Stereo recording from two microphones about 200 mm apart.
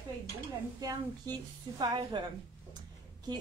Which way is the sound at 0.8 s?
20° right (ahead or behind).